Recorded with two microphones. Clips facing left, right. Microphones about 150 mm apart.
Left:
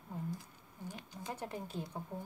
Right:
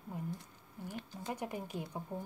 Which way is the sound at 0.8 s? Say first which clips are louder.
Right 3 dB; 15° left (ahead or behind).